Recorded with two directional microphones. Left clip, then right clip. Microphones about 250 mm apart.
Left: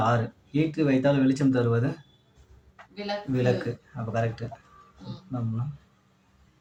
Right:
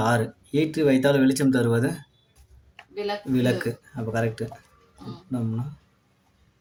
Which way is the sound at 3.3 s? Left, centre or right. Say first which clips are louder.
Right 1 dB; right.